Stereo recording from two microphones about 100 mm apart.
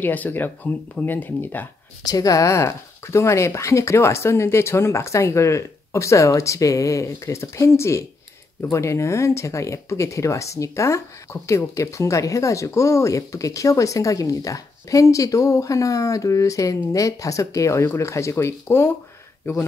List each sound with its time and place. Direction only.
0.0 s speech: 20° left (ahead or behind)
2.0 s speech: 35° left (ahead or behind)